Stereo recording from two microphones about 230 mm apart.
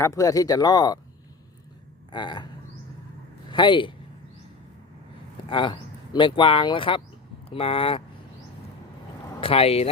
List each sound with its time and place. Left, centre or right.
0.0 s speech: centre
2.1 s speech: centre
3.5 s speech: left
5.5 s speech: left
9.4 s speech: left